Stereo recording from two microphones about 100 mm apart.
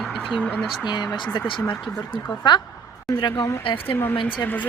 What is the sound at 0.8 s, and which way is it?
Speech, 45° left (ahead or behind).